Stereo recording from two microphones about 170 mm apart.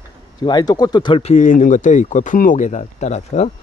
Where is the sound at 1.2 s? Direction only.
45° left (ahead or behind).